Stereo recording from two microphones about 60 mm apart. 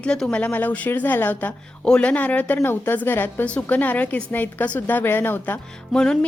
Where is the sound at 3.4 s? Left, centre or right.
Left.